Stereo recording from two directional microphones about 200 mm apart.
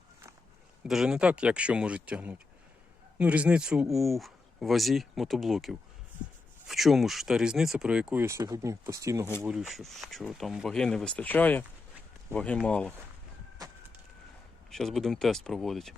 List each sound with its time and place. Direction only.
0.9 s speech: centre (ahead or behind)
9.4 s speech: 5° right (ahead or behind)
13.6 s vehicle: 20° right (ahead or behind)
14.7 s speech: centre (ahead or behind)